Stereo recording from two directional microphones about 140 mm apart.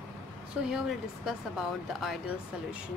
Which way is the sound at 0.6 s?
5° right (ahead or behind).